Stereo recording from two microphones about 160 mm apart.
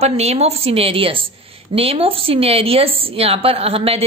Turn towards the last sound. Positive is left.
turn(degrees=-35)  # may be behind; listen again after turning